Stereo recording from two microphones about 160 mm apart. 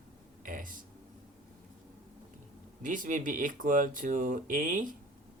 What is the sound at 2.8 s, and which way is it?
Speech, 55° right (ahead or behind).